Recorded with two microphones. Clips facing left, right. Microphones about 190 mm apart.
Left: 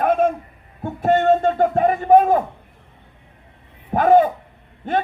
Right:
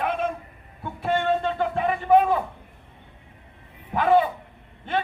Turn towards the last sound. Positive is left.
turn(degrees=45)  # may be behind; listen again after turning